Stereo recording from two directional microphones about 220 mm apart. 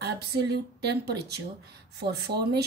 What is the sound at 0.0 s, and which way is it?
A woman's voice, 50° right (ahead or behind).